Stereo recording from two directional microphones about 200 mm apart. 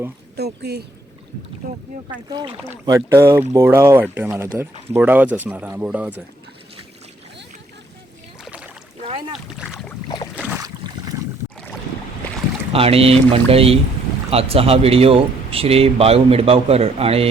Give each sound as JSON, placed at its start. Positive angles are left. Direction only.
{"t": 0.3, "sound": "speech", "side_deg": -55}
{"t": 2.3, "sound": "speech", "side_deg": -20}
{"t": 8.4, "sound": "rowboat", "side_deg": -5}
{"t": 9.0, "sound": "speech", "side_deg": -30}
{"t": 9.6, "sound": "speech", "side_deg": -5}
{"t": 10.3, "sound": "boat", "side_deg": -10}
{"t": 10.8, "sound": "boat", "side_deg": -20}
{"t": 12.7, "sound": "speech", "side_deg": -30}